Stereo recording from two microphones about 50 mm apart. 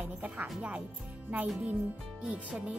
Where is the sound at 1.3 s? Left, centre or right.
Right.